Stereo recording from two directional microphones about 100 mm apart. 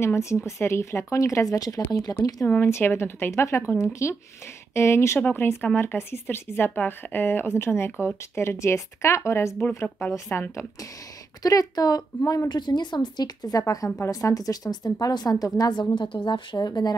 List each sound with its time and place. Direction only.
0.0 s speech: 30° left (ahead or behind)
2.6 s speech: 25° left (ahead or behind)
11.4 s speech: 40° left (ahead or behind)
12.4 s a woman's voice: 45° left (ahead or behind)
16.5 s a woman's voice: 40° left (ahead or behind)